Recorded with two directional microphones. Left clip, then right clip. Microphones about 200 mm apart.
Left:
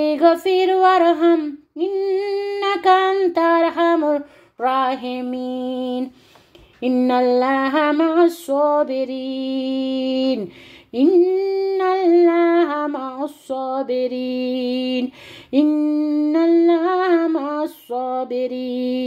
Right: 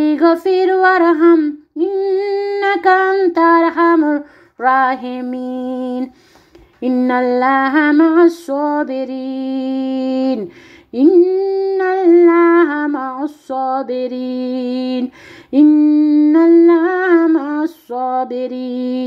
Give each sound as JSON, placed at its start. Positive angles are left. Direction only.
{"t": 0.1, "sound": "humming", "side_deg": -10}
{"t": 5.4, "sound": "a sound", "side_deg": -25}
{"t": 6.8, "sound": "humming", "side_deg": -10}